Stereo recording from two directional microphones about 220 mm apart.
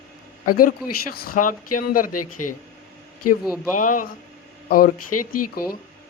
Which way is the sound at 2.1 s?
90° left.